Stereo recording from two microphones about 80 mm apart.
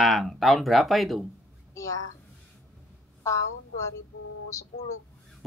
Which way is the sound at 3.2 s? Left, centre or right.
Left.